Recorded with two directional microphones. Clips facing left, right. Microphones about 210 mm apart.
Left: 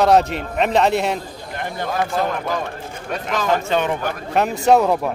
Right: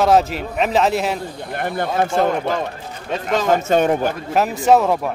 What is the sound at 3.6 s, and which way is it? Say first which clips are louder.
Speech: right 4 dB; 45° right (ahead or behind).